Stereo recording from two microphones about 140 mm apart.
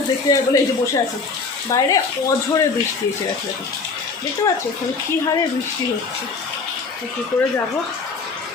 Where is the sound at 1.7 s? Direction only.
20° left (ahead or behind).